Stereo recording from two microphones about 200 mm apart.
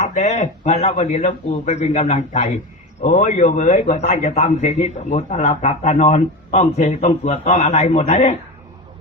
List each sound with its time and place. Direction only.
0.0 s a man's voice: 35° left (ahead or behind)